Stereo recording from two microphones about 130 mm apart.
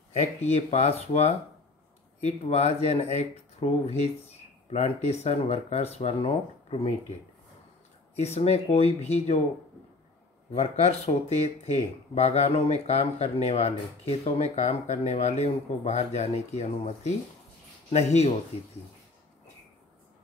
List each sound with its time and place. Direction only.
0.4 s speech: 55° left (ahead or behind)
8.2 s speech: 55° left (ahead or behind)
10.5 s speech: 50° left (ahead or behind)